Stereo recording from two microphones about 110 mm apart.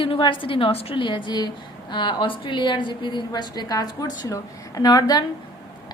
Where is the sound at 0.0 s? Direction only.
50° left (ahead or behind).